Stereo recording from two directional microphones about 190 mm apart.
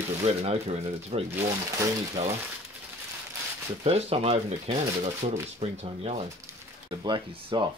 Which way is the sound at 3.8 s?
35° right (ahead or behind).